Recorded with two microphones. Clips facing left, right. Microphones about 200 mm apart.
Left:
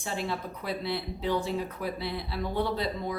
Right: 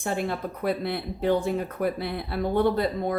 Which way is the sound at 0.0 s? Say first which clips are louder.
Right 5 dB; 55° right (ahead or behind).